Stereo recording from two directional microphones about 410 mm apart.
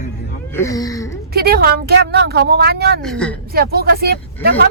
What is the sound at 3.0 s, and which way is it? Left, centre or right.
Speech, centre.